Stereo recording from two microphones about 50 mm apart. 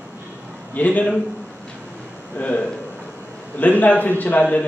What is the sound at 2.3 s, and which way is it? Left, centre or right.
A man's voice, left.